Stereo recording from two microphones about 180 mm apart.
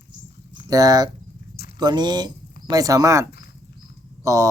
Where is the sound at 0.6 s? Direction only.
20° right (ahead or behind).